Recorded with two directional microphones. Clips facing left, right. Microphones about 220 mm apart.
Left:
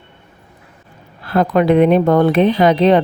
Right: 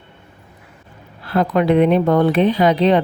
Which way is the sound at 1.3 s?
50° left (ahead or behind).